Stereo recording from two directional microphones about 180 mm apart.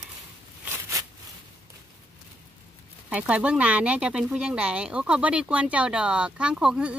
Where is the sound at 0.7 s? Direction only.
15° right (ahead or behind).